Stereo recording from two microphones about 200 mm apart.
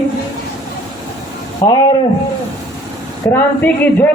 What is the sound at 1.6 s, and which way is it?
Speech, 15° left (ahead or behind).